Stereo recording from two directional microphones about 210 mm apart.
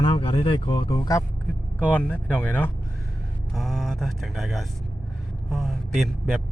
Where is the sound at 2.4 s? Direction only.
10° left (ahead or behind).